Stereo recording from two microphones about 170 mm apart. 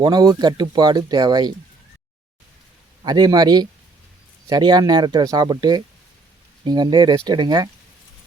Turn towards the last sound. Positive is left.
turn(degrees=-25)  # may be behind; listen again after turning